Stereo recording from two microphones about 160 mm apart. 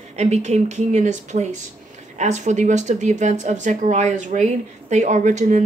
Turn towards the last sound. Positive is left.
turn(degrees=-50)  # may be behind; listen again after turning